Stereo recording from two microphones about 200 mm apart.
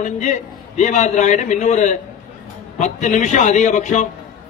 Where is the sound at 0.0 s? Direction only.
35° left (ahead or behind).